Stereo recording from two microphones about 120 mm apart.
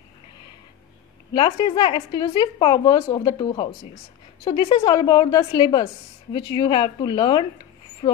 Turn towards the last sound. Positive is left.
turn(degrees=40)  # may be behind; listen again after turning